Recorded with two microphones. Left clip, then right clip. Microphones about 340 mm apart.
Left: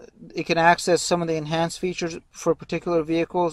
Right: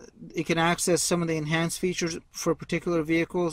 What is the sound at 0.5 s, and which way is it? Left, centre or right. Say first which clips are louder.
Speech: left 7 dB; centre.